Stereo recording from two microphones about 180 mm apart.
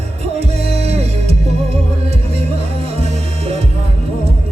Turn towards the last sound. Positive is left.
turn(degrees=-35)  # may be behind; listen again after turning